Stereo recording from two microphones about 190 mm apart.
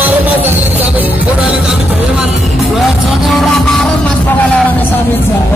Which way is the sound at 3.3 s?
Centre (ahead or behind).